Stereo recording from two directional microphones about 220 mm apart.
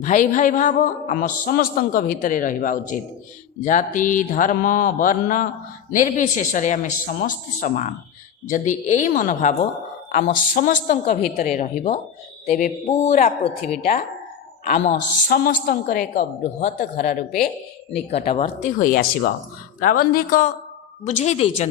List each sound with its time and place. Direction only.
0.0 s a man's voice: 35° left (ahead or behind)
15.3 s a man's voice: 40° left (ahead or behind)
16.7 s a man's voice: 45° left (ahead or behind)
17.9 s a man's voice: 30° left (ahead or behind)